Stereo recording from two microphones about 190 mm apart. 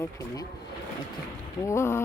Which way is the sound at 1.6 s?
15° left (ahead or behind).